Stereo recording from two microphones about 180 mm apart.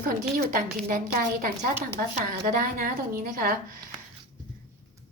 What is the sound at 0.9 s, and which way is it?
A woman's voice, 50° right (ahead or behind).